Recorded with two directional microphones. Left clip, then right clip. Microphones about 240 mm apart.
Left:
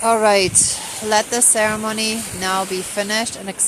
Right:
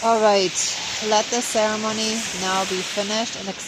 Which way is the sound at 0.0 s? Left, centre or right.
Centre.